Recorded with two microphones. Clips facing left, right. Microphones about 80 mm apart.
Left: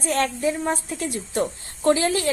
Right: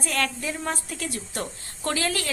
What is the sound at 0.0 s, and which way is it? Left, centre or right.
A woman's voice, left.